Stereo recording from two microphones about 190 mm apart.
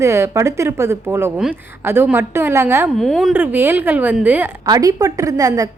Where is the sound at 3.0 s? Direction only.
Centre (ahead or behind).